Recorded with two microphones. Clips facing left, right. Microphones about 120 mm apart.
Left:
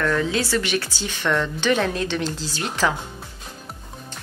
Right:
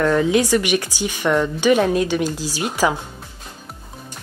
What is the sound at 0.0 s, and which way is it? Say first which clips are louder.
Speech: right 6 dB; 20° right (ahead or behind).